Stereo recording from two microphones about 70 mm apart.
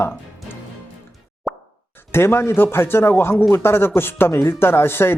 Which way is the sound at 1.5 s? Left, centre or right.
Centre.